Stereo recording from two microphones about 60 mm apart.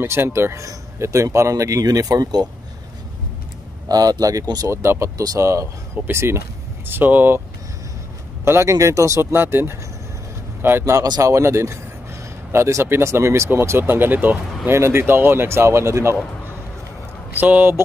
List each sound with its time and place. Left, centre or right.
0.0 s speech: right
3.9 s speech: right
4.6 s speech: right
6.0 s speech: right
6.9 s speech: right
8.5 s speech: right
8.7 s speech: right
9.2 s speech: right
10.9 s speech: right
14.7 s speech: right
17.3 s speech: right